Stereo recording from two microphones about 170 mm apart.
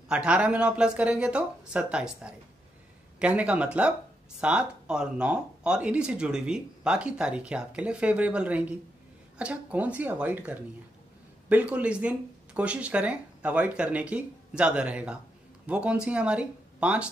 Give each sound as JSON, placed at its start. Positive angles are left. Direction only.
{"t": 0.1, "sound": "speech", "side_deg": -5}